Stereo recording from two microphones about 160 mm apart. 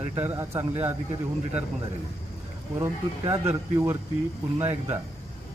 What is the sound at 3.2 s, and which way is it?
Speech, 30° right (ahead or behind).